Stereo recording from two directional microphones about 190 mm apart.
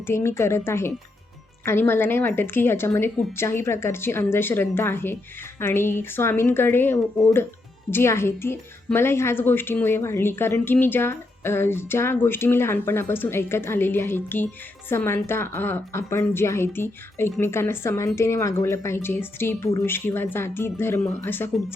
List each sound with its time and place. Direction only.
0.1 s a woman's voice: 15° left (ahead or behind)